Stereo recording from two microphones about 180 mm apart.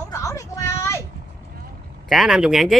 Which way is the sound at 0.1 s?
20° left (ahead or behind).